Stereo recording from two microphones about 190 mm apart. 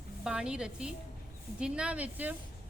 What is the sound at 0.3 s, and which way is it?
A woman's voice, 5° right (ahead or behind).